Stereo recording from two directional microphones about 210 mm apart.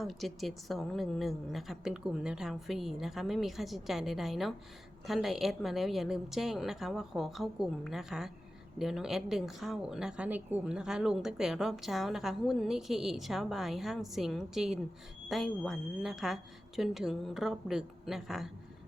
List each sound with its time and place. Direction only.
0.0 s speech: centre (ahead or behind)